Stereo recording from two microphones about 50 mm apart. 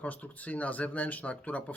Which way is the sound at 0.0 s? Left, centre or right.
Left.